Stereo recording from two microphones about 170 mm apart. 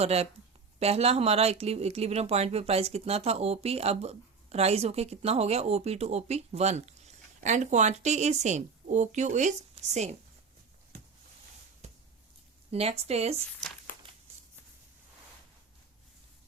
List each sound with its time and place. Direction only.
0.0 s speech: 35° right (ahead or behind)
11.8 s a sound: 40° right (ahead or behind)
12.7 s speech: 35° right (ahead or behind)